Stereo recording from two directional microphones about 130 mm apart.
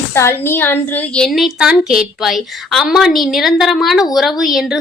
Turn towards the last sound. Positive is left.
turn(degrees=0)  # may be behind; listen again after turning